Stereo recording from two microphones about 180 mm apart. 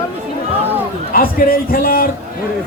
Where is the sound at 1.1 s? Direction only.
55° left (ahead or behind).